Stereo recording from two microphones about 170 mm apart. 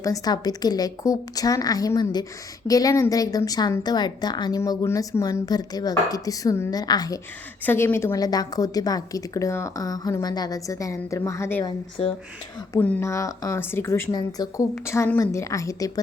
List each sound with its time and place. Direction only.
0.0 s a woman's voice: 20° left (ahead or behind)
7.6 s a woman's voice: 10° left (ahead or behind)
12.8 s a woman's voice: 10° left (ahead or behind)